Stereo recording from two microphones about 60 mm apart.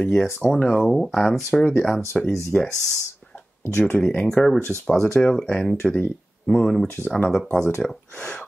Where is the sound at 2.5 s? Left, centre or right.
Left.